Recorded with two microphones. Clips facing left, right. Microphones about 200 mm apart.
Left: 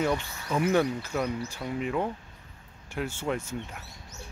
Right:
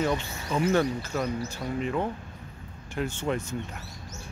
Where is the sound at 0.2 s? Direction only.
20° right (ahead or behind).